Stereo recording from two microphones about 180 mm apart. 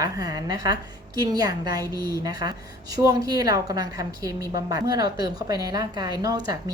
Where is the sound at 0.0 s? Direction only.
20° right (ahead or behind).